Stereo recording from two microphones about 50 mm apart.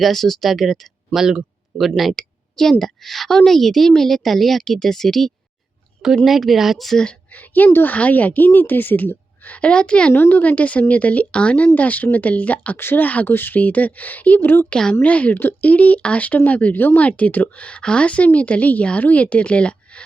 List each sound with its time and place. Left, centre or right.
0.0 s a woman's voice: centre
7.3 s a sound: left
7.7 s speech: left
7.9 s a woman's voice: left
10.1 s a woman's voice: left
12.7 s a woman's voice: left
14.7 s a woman's voice: centre
15.0 s a woman's voice: left
17.0 s speech: left